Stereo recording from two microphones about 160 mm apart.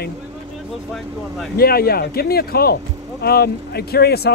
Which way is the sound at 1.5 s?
70° left (ahead or behind).